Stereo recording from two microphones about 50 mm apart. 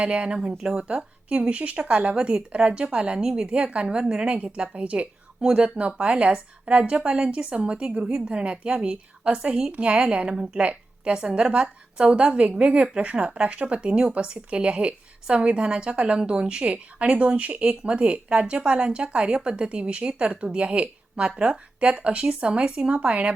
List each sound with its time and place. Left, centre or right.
0.0 s speech: right